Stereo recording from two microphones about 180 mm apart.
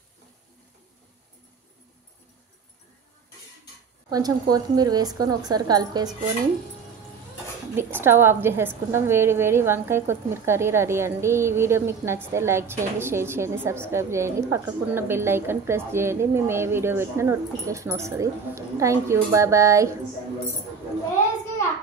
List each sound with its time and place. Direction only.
4.1 s speech: 20° right (ahead or behind)
7.7 s a woman's voice: 10° right (ahead or behind)